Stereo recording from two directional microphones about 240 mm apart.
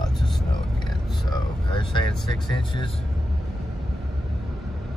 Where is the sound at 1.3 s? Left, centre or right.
Left.